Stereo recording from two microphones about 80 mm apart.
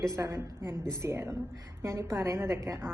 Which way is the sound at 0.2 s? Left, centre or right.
Right.